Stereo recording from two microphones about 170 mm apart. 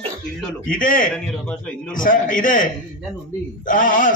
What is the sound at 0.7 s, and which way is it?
A man's voice, 55° left (ahead or behind).